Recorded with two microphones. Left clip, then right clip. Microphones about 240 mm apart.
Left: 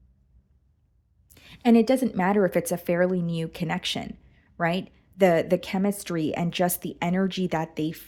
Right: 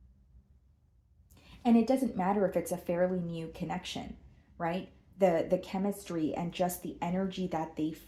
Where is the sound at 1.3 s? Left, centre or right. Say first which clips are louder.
Left 8 dB; left.